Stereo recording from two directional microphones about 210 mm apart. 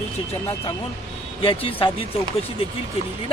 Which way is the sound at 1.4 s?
25° left (ahead or behind).